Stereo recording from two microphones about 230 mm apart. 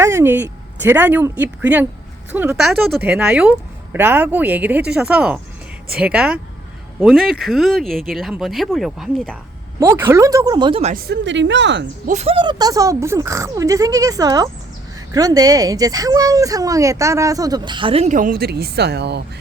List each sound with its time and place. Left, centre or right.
0.0 s speech: centre
10.9 s speech: right
12.0 s speech: right